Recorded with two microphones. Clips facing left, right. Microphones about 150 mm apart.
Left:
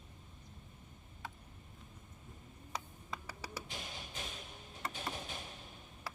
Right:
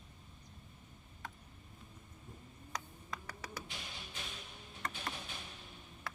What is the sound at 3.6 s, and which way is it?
Power windows, 40° left (ahead or behind).